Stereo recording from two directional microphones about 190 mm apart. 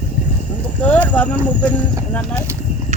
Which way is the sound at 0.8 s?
5° left (ahead or behind).